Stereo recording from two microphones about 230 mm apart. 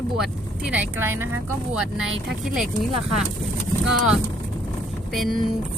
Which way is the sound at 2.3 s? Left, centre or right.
Centre.